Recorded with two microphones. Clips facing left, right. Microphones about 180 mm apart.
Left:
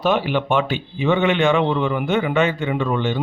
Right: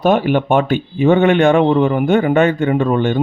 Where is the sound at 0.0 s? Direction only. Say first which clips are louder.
Right 6 dB; 50° right (ahead or behind).